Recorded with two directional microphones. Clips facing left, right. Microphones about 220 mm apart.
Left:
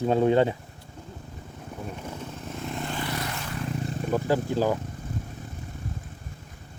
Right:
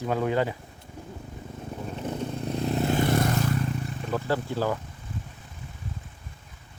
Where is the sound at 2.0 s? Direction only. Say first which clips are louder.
Right 6 dB; 35° right (ahead or behind).